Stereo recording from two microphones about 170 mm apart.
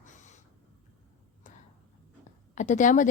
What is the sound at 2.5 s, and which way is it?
Speech, 45° left (ahead or behind).